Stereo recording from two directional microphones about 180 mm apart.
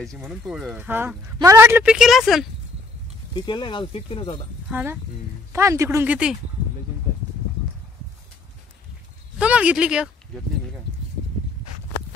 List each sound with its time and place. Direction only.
0.2 s speech: 5° right (ahead or behind)
3.3 s speech: 25° left (ahead or behind)
4.6 s speech: 10° right (ahead or behind)
9.4 s speech: 5° right (ahead or behind)